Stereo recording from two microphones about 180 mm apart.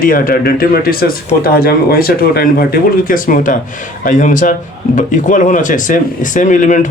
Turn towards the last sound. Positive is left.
turn(degrees=45)  # may be behind; listen again after turning